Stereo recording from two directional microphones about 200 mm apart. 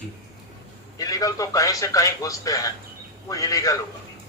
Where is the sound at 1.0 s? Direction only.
15° left (ahead or behind).